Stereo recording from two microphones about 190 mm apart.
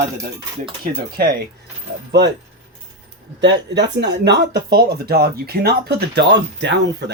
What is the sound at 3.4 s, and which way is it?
Speech, 65° right (ahead or behind).